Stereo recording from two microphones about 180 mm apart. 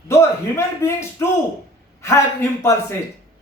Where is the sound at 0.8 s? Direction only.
15° left (ahead or behind).